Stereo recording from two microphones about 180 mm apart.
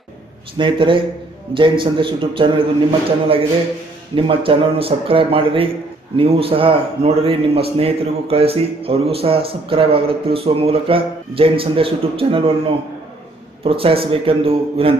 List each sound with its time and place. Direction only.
0.6 s a man's voice: 25° right (ahead or behind)
4.1 s a man's voice: 30° right (ahead or behind)